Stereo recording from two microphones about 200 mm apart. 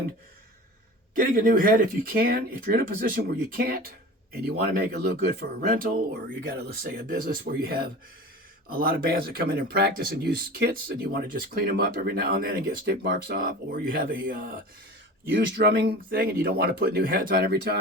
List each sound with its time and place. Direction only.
1.1 s speech: 45° right (ahead or behind)
15.3 s speech: 55° right (ahead or behind)